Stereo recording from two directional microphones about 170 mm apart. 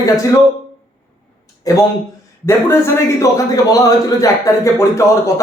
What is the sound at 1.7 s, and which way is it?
A man's voice, 20° left (ahead or behind).